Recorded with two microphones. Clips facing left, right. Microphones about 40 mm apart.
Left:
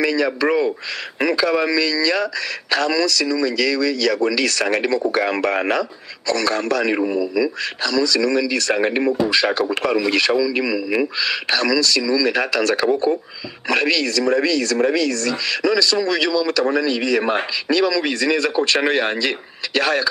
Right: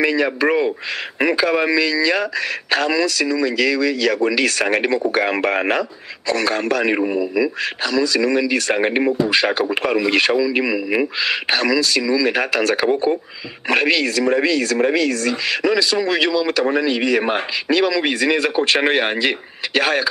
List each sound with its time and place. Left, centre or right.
0.0 s a man's voice: right
12.8 s speech: right
13.7 s a man's voice: right